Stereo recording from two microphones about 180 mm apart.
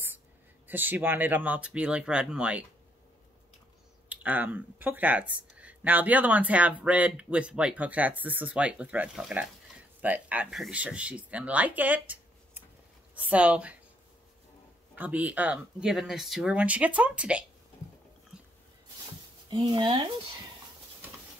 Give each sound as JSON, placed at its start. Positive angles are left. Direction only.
{"t": 0.7, "sound": "speech", "side_deg": -10}
{"t": 4.1, "sound": "speech", "side_deg": -10}
{"t": 15.0, "sound": "speech", "side_deg": -10}
{"t": 18.3, "sound": "a sound", "side_deg": -5}
{"t": 19.5, "sound": "speech", "side_deg": -25}